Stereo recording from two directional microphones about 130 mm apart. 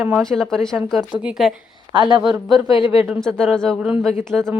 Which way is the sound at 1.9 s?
40° right (ahead or behind).